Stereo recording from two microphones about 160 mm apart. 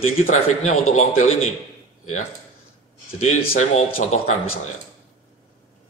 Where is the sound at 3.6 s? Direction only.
45° left (ahead or behind).